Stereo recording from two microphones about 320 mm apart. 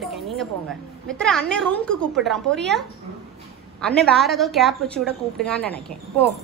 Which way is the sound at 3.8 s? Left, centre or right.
Centre.